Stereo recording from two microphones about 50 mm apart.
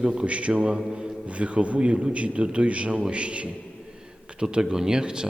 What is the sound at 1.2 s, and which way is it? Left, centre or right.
A man's voice, right.